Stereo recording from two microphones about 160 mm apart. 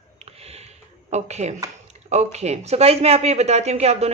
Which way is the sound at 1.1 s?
45° right (ahead or behind).